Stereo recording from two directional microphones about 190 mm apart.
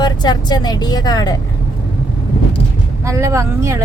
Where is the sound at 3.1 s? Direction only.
15° right (ahead or behind).